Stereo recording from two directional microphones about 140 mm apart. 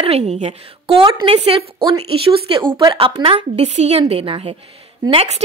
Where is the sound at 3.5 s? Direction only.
50° right (ahead or behind).